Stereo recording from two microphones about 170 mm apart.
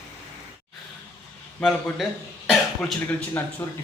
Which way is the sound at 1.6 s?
Centre (ahead or behind).